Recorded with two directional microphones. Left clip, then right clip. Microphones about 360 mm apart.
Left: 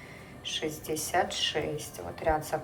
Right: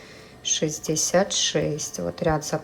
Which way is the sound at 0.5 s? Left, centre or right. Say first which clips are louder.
Right 7 dB; centre.